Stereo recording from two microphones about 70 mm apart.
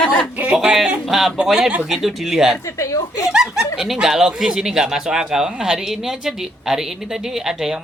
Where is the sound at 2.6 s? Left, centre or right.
Left.